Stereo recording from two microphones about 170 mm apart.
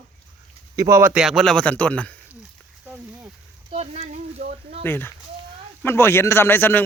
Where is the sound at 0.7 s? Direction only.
20° right (ahead or behind); by 2.4 s 10° left (ahead or behind).